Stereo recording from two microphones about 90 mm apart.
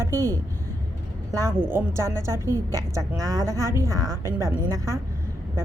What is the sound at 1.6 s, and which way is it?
A woman's voice, 25° right (ahead or behind).